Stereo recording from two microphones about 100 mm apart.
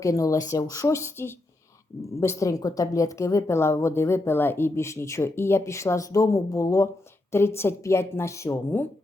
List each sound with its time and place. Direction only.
0.0 s speech: 35° left (ahead or behind)